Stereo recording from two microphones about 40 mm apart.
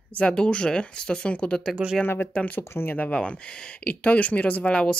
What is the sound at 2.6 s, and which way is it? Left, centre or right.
Speech, left.